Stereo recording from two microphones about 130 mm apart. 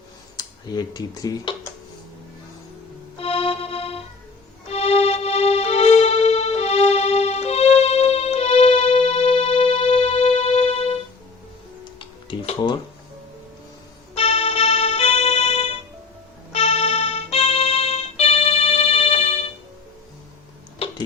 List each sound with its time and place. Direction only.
0.3 s speech: 30° left (ahead or behind)
3.2 s music: 50° left (ahead or behind)
12.3 s music: 35° left (ahead or behind)
14.2 s music: 50° left (ahead or behind)